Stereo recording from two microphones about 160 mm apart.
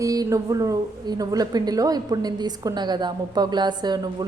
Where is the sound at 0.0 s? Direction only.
20° right (ahead or behind).